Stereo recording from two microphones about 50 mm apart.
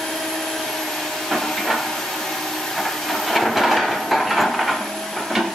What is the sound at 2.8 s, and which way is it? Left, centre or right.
Train, centre.